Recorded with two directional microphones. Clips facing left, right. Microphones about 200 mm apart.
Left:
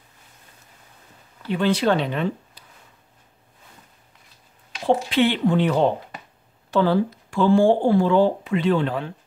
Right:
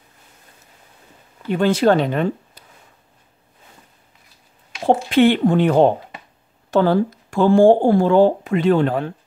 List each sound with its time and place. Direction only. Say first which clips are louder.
1.5 s speech: right 4 dB; 45° right (ahead or behind)
4.8 s speech: right 5 dB; 50° right (ahead or behind)